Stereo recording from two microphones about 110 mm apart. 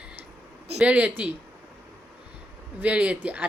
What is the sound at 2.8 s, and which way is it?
Speech, 10° right (ahead or behind).